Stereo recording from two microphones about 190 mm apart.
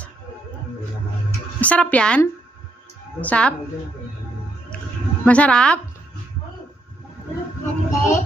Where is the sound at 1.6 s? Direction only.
5° left (ahead or behind).